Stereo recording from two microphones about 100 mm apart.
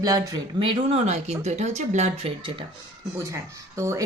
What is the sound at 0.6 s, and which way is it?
Speech, 65° right (ahead or behind).